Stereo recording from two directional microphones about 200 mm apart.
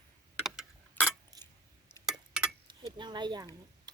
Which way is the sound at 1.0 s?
10° left (ahead or behind).